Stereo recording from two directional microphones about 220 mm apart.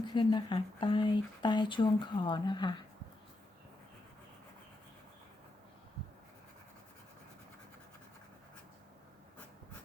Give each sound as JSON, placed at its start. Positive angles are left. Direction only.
{"t": 0.0, "sound": "speech", "side_deg": 20}